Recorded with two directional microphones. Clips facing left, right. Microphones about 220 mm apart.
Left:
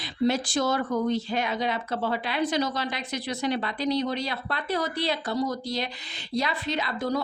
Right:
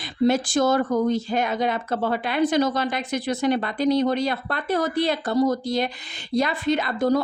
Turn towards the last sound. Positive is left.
turn(degrees=-50)  # may be behind; listen again after turning